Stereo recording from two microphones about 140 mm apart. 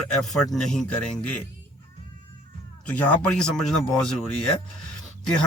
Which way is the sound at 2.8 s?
10° left (ahead or behind).